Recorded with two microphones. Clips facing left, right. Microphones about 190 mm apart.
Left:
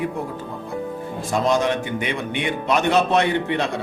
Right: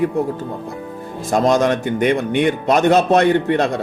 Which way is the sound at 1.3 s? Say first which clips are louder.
Right 5 dB; 45° right (ahead or behind).